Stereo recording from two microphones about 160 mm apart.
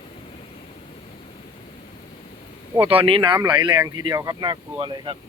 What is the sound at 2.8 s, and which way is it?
Speech, 35° right (ahead or behind).